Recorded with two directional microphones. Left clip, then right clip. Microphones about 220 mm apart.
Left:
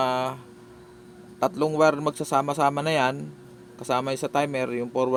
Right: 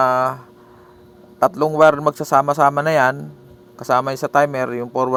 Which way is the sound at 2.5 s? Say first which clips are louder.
Right 8 dB; 20° right (ahead or behind).